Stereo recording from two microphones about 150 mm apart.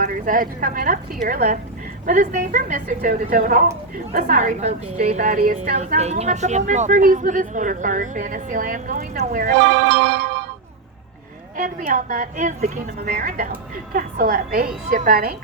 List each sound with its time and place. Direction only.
0.0 s a woman's voice: 65° right (ahead or behind)
4.1 s a woman's voice: 60° right (ahead or behind); by 9.5 s 75° right (ahead or behind)
11.5 s a woman's voice: 60° right (ahead or behind); by 14.7 s 75° right (ahead or behind)
14.8 s a woman's voice: 65° right (ahead or behind); by 15.4 s 80° right